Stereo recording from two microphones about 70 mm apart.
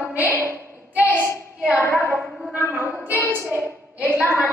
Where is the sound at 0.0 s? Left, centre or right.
Right.